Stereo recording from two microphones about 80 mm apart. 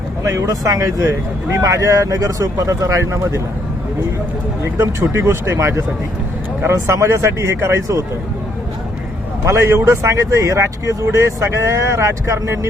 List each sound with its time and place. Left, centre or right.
0.2 s speech: right
4.6 s speech: right
9.4 s speech: right